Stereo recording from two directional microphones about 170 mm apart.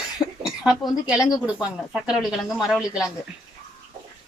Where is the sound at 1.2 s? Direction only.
20° left (ahead or behind).